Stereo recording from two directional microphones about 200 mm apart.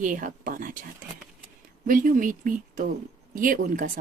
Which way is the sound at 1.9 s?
40° right (ahead or behind).